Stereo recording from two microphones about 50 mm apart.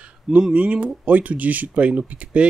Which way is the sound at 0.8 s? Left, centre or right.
Right.